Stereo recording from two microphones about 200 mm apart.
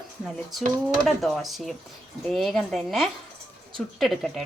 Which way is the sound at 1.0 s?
Centre (ahead or behind).